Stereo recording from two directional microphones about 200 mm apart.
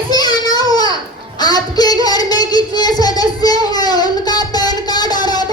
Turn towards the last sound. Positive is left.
turn(degrees=20)  # may be behind; listen again after turning